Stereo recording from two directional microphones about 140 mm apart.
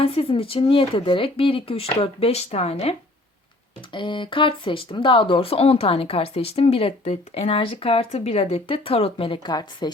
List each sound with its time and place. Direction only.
0.0 s speech: 45° left (ahead or behind)
3.9 s speech: 35° left (ahead or behind)